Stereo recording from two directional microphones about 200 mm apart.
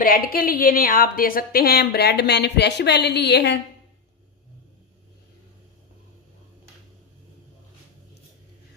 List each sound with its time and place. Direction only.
0.0 s a woman's voice: 45° left (ahead or behind)